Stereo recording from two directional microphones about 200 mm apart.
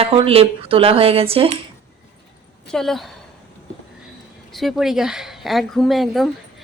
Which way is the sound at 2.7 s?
Centre (ahead or behind).